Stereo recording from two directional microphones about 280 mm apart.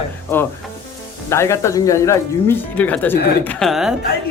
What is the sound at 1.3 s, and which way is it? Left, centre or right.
Speech, centre.